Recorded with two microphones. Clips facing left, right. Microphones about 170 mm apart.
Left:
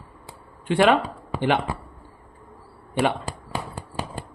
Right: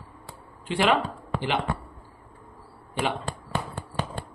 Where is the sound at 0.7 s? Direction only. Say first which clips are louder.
Left 5 dB; 50° left (ahead or behind).